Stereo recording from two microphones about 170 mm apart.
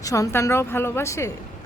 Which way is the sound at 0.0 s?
20° left (ahead or behind).